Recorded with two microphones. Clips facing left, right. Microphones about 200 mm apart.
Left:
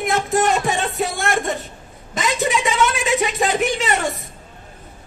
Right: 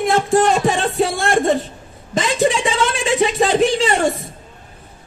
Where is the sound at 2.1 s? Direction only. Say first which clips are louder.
Right 4 dB; 30° right (ahead or behind).